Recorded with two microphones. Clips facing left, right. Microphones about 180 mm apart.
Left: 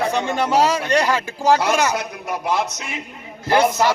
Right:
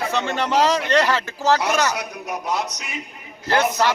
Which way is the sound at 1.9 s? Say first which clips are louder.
Left 3 dB; 30° left (ahead or behind).